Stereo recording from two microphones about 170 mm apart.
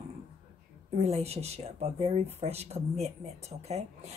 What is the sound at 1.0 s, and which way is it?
Speech, 40° right (ahead or behind).